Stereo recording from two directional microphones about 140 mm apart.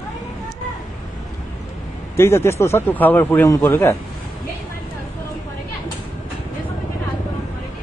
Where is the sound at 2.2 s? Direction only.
20° left (ahead or behind).